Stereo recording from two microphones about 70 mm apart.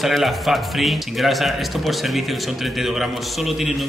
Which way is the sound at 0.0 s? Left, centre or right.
Centre.